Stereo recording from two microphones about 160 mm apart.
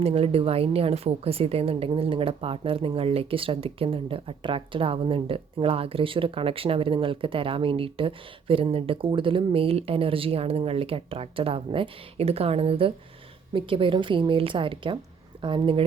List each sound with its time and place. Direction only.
0.0 s a woman's voice: 40° right (ahead or behind)